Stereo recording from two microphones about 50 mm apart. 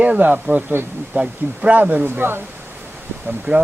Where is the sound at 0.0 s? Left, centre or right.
Right.